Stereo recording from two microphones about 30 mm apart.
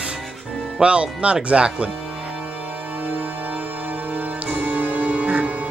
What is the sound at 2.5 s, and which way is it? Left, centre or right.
Music, right.